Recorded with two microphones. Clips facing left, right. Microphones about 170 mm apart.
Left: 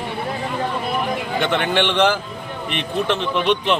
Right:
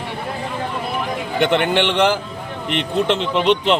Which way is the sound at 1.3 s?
15° right (ahead or behind).